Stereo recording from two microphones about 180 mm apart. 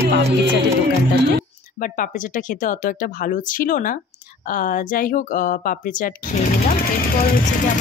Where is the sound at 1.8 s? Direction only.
50° left (ahead or behind).